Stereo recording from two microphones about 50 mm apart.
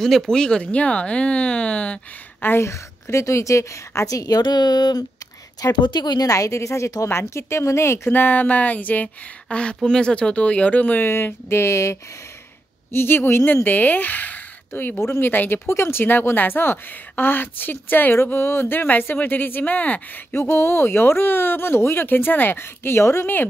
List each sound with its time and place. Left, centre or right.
0.0 s speech: centre
2.6 s a woman's voice: left
5.6 s speech: left
8.1 s speech: left
9.5 s speech: left
11.0 s a sound: left
12.9 s speech: left
13.7 s speech: left
15.6 s speech: left
18.1 s speech: left
20.3 s speech: left